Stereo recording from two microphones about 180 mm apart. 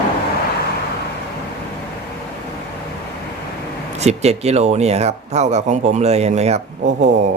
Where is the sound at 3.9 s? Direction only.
35° right (ahead or behind).